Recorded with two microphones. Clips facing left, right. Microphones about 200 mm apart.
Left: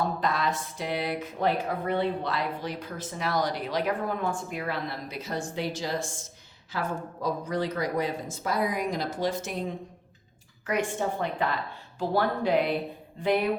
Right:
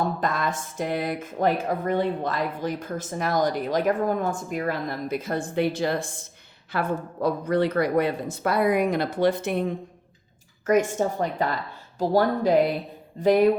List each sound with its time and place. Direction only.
0.2 s speech: 50° right (ahead or behind)
10.7 s speech: 45° right (ahead or behind)